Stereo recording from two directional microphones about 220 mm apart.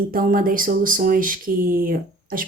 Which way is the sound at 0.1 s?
40° right (ahead or behind).